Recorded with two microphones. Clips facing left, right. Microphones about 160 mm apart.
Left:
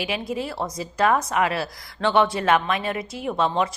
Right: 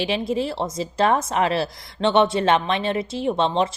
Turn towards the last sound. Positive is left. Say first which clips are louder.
# right 2 dB
turn(degrees=-25)  # may be behind; listen again after turning